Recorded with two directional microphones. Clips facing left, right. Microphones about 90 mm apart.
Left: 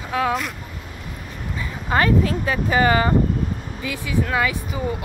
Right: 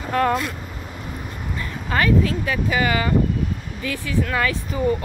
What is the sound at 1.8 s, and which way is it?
Speech, 30° left (ahead or behind).